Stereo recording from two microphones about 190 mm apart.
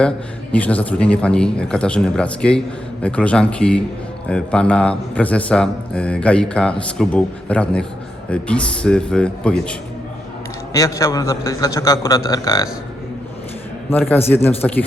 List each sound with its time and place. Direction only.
0.5 s a man's voice: 10° left (ahead or behind)
10.8 s a man's voice: 20° left (ahead or behind)
14.1 s a man's voice: 10° left (ahead or behind)